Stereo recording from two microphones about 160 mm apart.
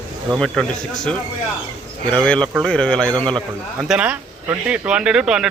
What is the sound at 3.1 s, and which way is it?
Speech, 30° right (ahead or behind).